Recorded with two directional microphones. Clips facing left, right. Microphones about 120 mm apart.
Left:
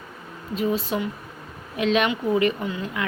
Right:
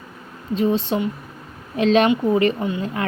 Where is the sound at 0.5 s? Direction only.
30° right (ahead or behind).